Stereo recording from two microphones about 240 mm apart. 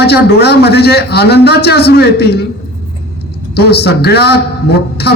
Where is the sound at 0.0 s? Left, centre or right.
Left.